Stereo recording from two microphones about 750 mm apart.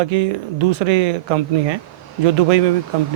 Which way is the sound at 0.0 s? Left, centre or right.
Right.